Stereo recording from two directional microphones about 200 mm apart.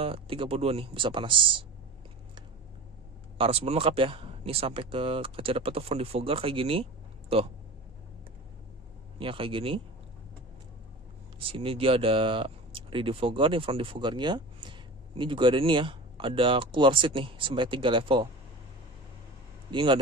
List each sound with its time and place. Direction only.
0.0 s speech: 25° right (ahead or behind)
3.3 s speech: 30° right (ahead or behind)
9.2 s speech: 25° right (ahead or behind)
11.3 s speech: 25° right (ahead or behind)
19.7 s speech: 25° right (ahead or behind)